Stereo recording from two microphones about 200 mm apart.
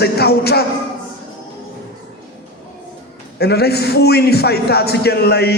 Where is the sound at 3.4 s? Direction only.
55° left (ahead or behind).